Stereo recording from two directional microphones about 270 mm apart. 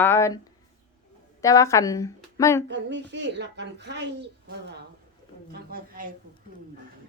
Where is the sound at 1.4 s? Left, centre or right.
Centre.